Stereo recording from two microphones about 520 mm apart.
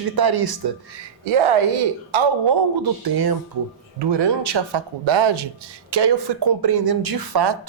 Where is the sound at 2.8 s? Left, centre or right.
Right.